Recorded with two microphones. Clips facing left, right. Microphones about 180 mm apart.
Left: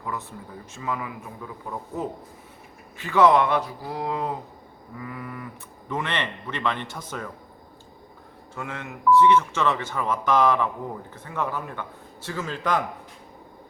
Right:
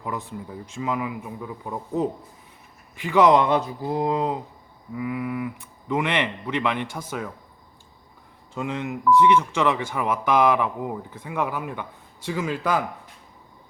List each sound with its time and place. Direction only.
0.0 s speech: 15° right (ahead or behind)
3.0 s speech: 15° right (ahead or behind)
8.5 s speech: 20° right (ahead or behind)